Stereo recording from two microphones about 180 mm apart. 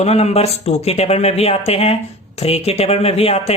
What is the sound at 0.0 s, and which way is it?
Speech, 35° left (ahead or behind).